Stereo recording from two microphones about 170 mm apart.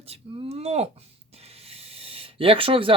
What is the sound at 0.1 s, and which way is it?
Speech, 35° right (ahead or behind).